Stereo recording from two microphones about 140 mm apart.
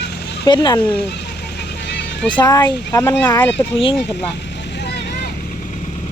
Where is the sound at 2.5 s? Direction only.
20° left (ahead or behind).